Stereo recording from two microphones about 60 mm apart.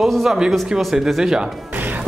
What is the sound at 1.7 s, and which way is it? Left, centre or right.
Music, right.